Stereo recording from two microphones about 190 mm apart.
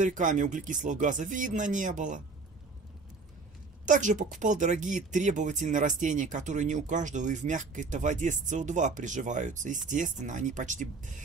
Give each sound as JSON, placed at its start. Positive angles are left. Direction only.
{"t": 0.0, "sound": "speech", "side_deg": -40}
{"t": 3.8, "sound": "speech", "side_deg": -40}